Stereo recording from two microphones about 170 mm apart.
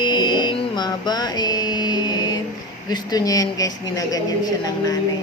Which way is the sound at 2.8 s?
25° left (ahead or behind).